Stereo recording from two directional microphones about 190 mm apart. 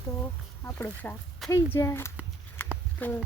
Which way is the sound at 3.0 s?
10° left (ahead or behind).